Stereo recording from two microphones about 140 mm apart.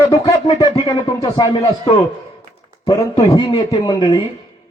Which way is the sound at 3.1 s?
35° left (ahead or behind).